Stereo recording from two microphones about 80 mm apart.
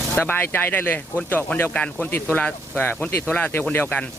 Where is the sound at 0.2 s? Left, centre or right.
Left.